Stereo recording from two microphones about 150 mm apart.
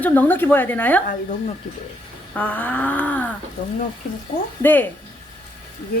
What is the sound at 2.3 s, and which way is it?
Speech, 10° left (ahead or behind).